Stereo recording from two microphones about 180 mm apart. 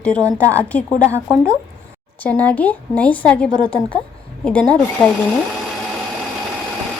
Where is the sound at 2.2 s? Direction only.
5° left (ahead or behind).